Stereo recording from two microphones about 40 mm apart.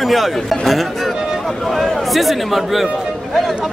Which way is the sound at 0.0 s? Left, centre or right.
Centre.